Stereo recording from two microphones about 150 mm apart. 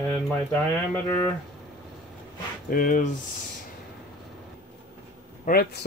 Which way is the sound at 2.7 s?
65° left (ahead or behind).